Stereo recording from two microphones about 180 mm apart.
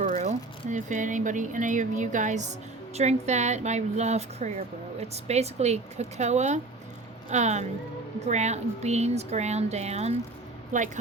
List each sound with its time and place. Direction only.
0.0 s speech: 40° right (ahead or behind)